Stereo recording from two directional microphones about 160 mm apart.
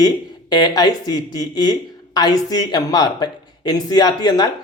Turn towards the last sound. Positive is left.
turn(degrees=25)  # may be behind; listen again after turning